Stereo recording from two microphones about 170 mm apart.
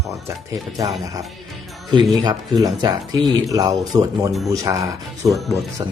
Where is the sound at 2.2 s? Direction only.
25° right (ahead or behind).